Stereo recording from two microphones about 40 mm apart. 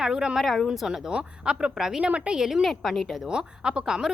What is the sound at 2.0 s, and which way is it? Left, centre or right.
Speech, right.